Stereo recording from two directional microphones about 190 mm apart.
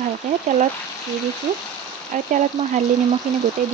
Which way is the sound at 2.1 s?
40° right (ahead or behind).